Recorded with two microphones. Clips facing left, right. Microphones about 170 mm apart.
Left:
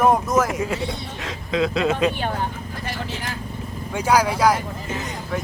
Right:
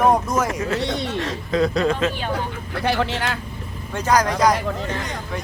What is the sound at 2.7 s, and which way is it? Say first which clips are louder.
Speech: right 8 dB; 70° right (ahead or behind).